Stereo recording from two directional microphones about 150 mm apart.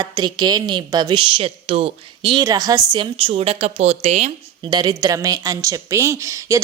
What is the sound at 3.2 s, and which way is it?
A woman's voice, 40° right (ahead or behind).